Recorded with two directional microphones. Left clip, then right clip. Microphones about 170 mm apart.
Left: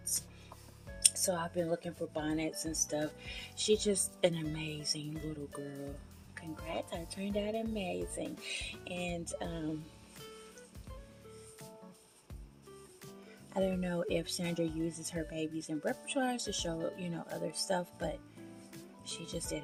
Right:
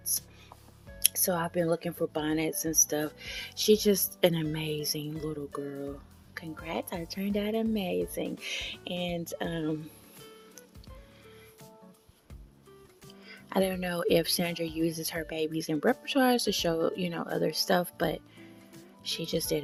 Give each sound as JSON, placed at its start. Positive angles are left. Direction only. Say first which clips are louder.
{"t": 1.0, "sound": "speech", "louder": "right 3 dB", "side_deg": -50}
{"t": 3.2, "sound": "speech", "louder": "right 6 dB", "side_deg": -40}
{"t": 13.5, "sound": "speech", "louder": "right 5 dB", "side_deg": -70}